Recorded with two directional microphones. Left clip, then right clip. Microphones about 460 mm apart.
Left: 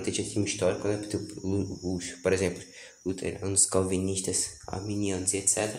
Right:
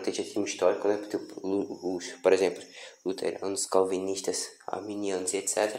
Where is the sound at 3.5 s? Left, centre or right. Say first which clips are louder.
Right 1 dB; centre.